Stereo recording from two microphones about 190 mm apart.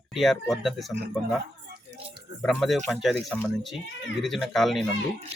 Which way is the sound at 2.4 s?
Centre (ahead or behind).